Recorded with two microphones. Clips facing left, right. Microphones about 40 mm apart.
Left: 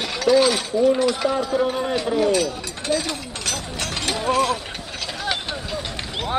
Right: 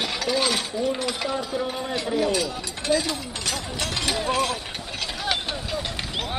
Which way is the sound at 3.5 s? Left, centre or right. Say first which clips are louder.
Left 1 dB; centre.